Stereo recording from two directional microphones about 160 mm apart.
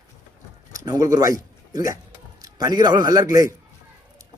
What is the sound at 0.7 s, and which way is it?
A man's voice, 20° right (ahead or behind).